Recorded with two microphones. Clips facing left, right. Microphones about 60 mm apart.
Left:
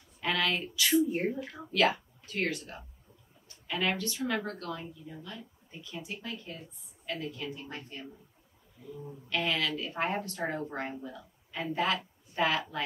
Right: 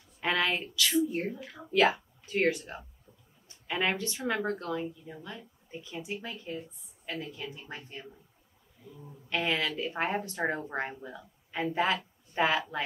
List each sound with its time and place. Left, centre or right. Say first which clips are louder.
0.2 s a sound: right 1 dB; right
0.7 s speech: left 2 dB; centre
1.7 s speech: right 2 dB; right
9.3 s a woman's voice: right 1 dB; right